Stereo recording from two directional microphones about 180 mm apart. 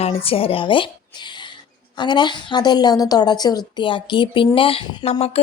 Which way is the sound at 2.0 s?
25° left (ahead or behind).